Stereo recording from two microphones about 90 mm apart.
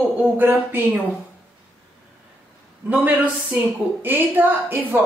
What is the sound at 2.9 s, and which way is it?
A woman's voice, 20° right (ahead or behind).